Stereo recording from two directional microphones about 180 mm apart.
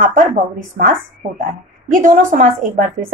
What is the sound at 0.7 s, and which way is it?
A woman's voice, 50° right (ahead or behind).